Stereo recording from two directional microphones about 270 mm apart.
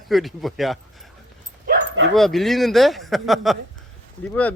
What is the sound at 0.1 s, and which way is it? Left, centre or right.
Speech, centre.